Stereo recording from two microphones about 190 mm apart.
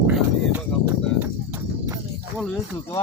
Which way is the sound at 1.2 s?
10° right (ahead or behind).